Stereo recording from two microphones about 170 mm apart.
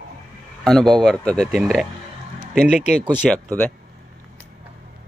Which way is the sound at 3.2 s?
5° left (ahead or behind).